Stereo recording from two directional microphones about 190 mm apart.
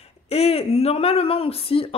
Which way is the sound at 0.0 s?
30° left (ahead or behind).